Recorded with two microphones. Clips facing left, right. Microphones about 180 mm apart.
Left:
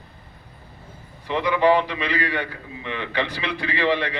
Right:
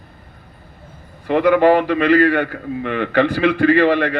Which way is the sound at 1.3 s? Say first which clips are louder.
Right 6 dB; 50° right (ahead or behind).